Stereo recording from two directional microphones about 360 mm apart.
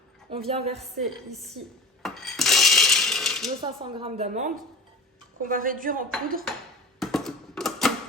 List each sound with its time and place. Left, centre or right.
0.3 s speech: centre
2.0 s coin: centre
3.6 s speech: centre
7.0 s typewriter: centre